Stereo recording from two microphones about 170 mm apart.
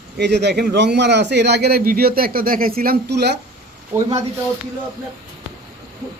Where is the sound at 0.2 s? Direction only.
85° right.